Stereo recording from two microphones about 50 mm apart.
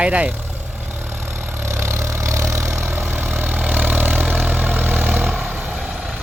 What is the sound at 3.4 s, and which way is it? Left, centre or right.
Vehicle, right.